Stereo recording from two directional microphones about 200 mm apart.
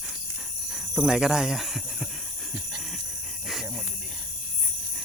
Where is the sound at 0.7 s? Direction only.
5° right (ahead or behind).